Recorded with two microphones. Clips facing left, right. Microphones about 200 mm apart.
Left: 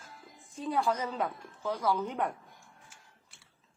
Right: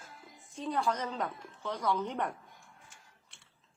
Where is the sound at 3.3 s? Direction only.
Centre (ahead or behind).